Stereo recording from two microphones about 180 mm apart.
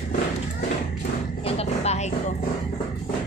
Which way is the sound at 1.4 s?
35° left (ahead or behind).